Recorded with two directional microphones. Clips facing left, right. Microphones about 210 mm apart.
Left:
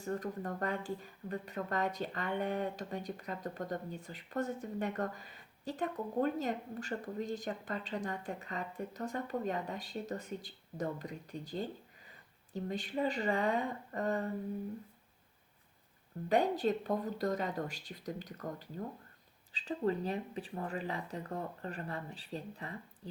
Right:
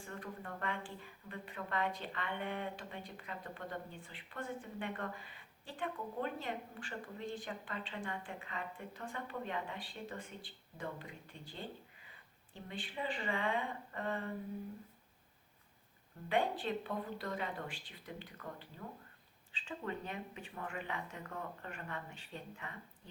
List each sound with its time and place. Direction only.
0.0 s speech: 40° left (ahead or behind)
16.3 s speech: 40° left (ahead or behind)